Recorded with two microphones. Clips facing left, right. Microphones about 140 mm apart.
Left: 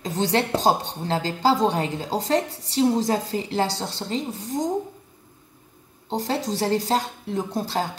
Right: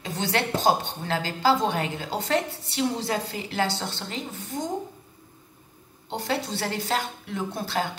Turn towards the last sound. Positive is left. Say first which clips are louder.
# left 3 dB
turn(degrees=35)  # may be behind; listen again after turning